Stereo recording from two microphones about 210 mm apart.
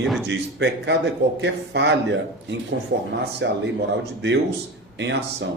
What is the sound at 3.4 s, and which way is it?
Speech, 60° right (ahead or behind).